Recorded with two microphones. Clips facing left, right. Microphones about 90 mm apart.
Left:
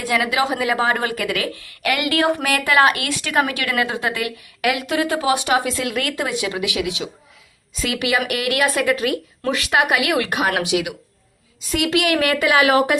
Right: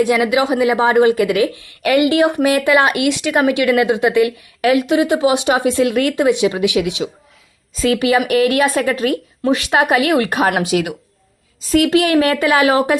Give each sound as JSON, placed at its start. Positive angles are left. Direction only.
{"t": 0.0, "sound": "a woman's voice", "side_deg": -25}